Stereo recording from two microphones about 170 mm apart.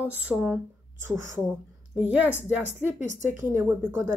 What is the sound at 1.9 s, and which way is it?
Speech, 10° right (ahead or behind).